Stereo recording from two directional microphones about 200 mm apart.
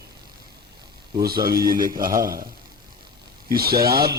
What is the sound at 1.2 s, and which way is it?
A man's voice, 50° right (ahead or behind).